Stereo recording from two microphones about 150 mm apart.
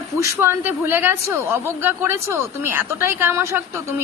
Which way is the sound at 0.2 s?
20° right (ahead or behind).